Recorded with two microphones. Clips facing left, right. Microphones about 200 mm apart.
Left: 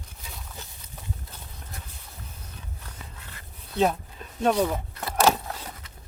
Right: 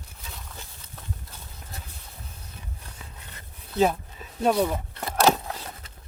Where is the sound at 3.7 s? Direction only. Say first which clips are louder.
Right 1 dB; centre (ahead or behind).